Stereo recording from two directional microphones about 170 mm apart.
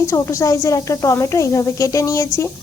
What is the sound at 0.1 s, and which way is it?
Speech, 15° left (ahead or behind).